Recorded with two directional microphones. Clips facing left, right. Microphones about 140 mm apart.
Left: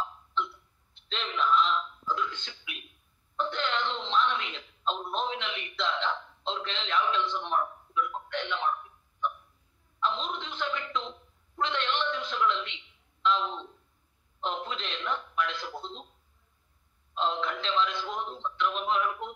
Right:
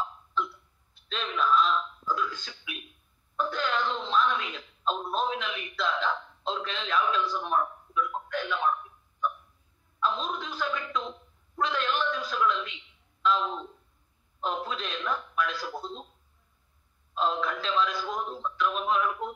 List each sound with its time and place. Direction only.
0.9 s a sound: 25° left (ahead or behind)
3.3 s wail: 25° left (ahead or behind)
5.1 s a man's voice: 25° left (ahead or behind)
8.3 s a sound: 25° left (ahead or behind)
9.9 s a sound: 25° left (ahead or behind)
11.6 s a man's voice: 25° left (ahead or behind)
13.4 s speech: 10° right (ahead or behind)
14.4 s a man's voice: 25° left (ahead or behind)
17.1 s a man's voice: 25° left (ahead or behind)